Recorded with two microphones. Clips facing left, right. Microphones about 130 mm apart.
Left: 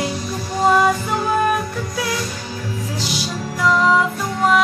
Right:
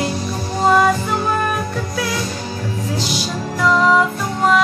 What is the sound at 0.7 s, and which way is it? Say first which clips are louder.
Music: right 1 dB; 5° left (ahead or behind).